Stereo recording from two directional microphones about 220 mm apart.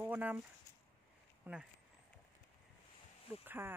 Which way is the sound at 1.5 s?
10° right (ahead or behind).